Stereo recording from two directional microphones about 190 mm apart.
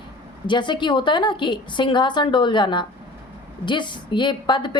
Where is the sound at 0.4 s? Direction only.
25° left (ahead or behind).